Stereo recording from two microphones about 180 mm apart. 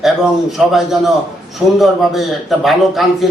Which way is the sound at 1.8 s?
Centre (ahead or behind).